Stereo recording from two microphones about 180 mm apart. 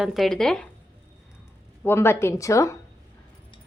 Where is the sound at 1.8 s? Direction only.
15° left (ahead or behind).